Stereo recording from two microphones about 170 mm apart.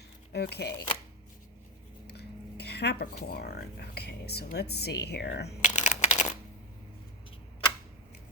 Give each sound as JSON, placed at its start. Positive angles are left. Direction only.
{"t": 0.3, "sound": "speech", "side_deg": 75}
{"t": 2.0, "sound": "dishes", "side_deg": 75}
{"t": 3.2, "sound": "speech", "side_deg": 65}
{"t": 5.6, "sound": "a sound", "side_deg": 40}